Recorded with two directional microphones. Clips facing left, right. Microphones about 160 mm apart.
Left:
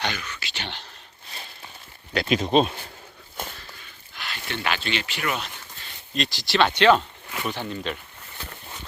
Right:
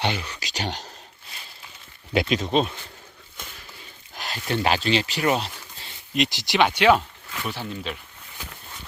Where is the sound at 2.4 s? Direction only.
20° left (ahead or behind).